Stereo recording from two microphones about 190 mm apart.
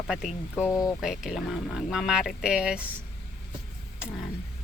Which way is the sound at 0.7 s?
20° left (ahead or behind).